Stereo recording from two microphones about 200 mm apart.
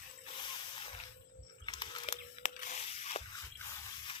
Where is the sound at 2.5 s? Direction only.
40° left (ahead or behind).